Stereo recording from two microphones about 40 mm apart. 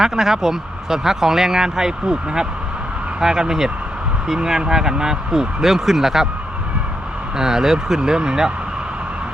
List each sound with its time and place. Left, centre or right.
0.0 s speech: centre
7.3 s speech: centre